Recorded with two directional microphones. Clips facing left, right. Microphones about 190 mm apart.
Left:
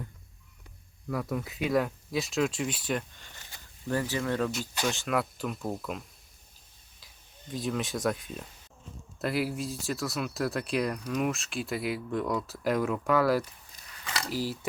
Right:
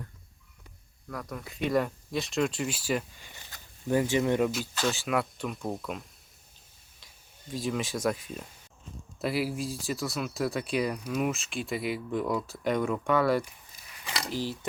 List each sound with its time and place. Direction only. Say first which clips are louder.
1.0 s speech: left 6 dB; 5° left (ahead or behind); by 3.4 s 10° right (ahead or behind)
4.0 s speech: right 5 dB; 25° right (ahead or behind)
4.9 s speech: right 1 dB; centre (ahead or behind)
7.5 s speech: even; centre (ahead or behind)
14.0 s speech: even; 15° right (ahead or behind)
14.3 s speech: left 1 dB; 5° left (ahead or behind)